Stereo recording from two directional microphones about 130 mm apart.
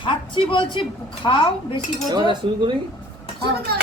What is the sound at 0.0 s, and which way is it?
A woman's voice, 40° left (ahead or behind).